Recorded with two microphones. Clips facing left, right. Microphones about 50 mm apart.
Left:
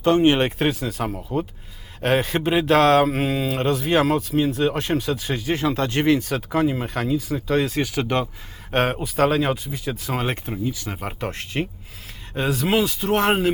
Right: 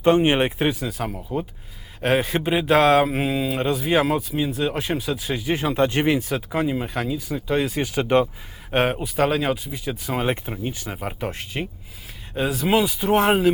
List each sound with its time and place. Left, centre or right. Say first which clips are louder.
0.0 s speech: even; right; by 2.6 s centre
2.6 s speech: even; centre
5.6 s speech: even; right
6.3 s speech: left 2 dB; centre
10.9 s speech: left 1 dB; centre
11.2 s speech: left 2 dB; centre